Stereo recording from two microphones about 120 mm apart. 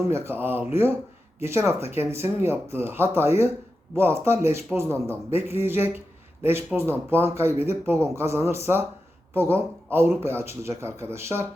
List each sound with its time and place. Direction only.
0.1 s speech: 20° right (ahead or behind)